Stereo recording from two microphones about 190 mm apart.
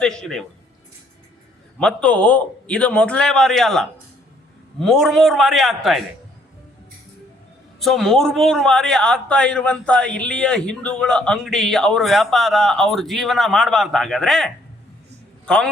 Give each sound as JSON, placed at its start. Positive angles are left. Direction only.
{"t": 0.0, "sound": "a man's voice", "side_deg": 5}
{"t": 1.8, "sound": "a man's voice", "side_deg": 5}
{"t": 7.8, "sound": "a man's voice", "side_deg": 0}